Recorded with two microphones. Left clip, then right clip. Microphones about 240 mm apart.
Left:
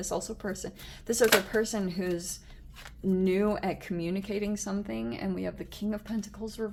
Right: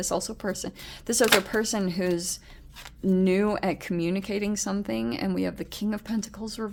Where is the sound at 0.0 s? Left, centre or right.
Right.